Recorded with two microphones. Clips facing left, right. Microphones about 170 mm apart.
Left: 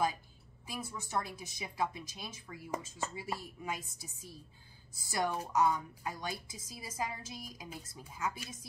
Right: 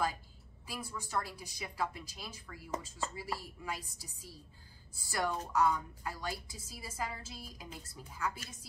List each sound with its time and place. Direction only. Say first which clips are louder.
0.7 s a woman's voice: left 1 dB; 20° left (ahead or behind)